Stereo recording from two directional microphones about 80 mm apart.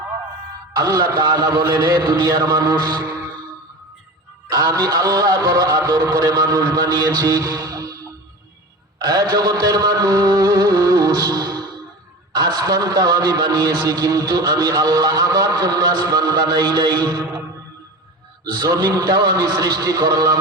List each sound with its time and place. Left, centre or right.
0.9 s a man's voice: right
1.2 s a man's voice: right
4.5 s a man's voice: right
9.0 s music: right
12.3 s a man's voice: right
18.5 s a man's voice: right